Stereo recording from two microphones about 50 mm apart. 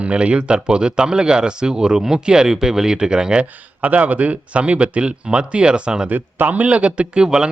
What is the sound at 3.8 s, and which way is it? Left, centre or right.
Speech, right.